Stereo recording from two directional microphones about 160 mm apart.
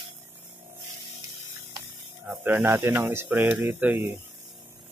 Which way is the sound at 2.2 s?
10° right (ahead or behind).